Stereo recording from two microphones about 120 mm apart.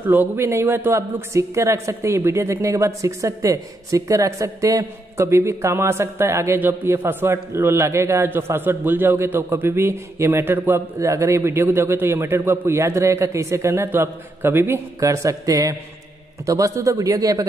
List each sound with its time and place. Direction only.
0.0 s a man's voice: 15° right (ahead or behind)